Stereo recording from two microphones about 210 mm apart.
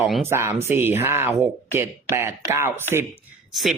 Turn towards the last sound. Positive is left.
turn(degrees=0)  # may be behind; listen again after turning